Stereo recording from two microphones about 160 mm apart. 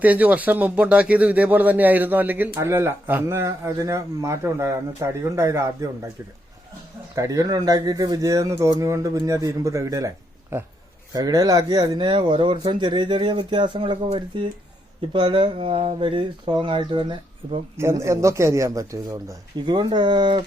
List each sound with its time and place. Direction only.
0.0 s speech: 10° right (ahead or behind)
7.2 s speech: 20° right (ahead or behind)
17.7 s speech: 15° right (ahead or behind)